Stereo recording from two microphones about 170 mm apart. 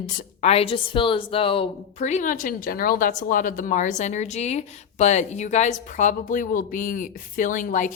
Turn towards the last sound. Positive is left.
turn(degrees=50)  # may be behind; listen again after turning